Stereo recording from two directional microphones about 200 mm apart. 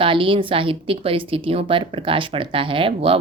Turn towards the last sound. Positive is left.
turn(degrees=-25)  # may be behind; listen again after turning